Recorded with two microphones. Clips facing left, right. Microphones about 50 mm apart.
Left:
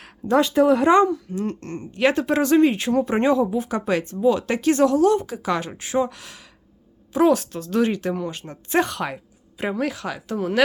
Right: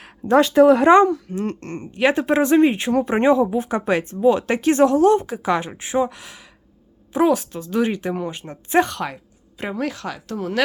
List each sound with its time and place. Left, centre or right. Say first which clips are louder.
0.3 s speech: right 4 dB; right
1.4 s speech: right 1 dB; right
1.9 s speech: right 2 dB; centre
8.8 s a woman's voice: right 2 dB; centre